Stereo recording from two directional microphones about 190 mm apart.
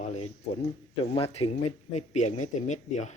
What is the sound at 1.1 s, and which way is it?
Speech, 30° left (ahead or behind).